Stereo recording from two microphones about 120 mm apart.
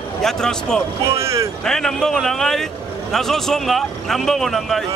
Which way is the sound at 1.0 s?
25° right (ahead or behind).